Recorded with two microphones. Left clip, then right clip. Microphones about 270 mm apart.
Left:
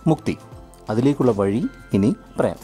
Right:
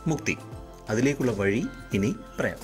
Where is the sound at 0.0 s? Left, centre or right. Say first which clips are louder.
Left 7 dB; centre.